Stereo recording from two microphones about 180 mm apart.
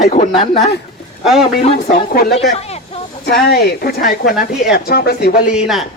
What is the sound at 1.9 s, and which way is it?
Speech, 60° left (ahead or behind).